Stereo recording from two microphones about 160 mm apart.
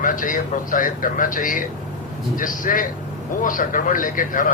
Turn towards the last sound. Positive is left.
turn(degrees=55)  # may be behind; listen again after turning